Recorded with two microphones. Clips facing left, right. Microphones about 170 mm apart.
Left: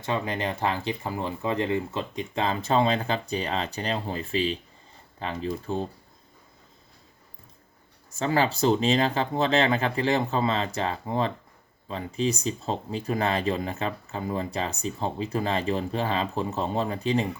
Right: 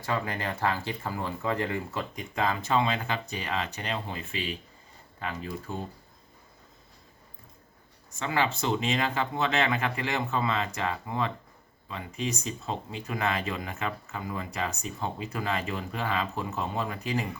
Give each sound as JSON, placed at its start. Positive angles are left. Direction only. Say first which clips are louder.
{"t": 0.0, "sound": "speech", "louder": "left 3 dB", "side_deg": 20}
{"t": 8.2, "sound": "speech", "louder": "left 5 dB", "side_deg": 35}